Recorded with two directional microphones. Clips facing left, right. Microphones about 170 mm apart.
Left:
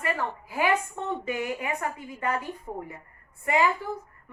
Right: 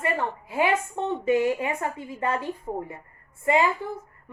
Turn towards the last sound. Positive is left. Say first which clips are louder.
# right 2 dB
turn(degrees=-25)  # may be behind; listen again after turning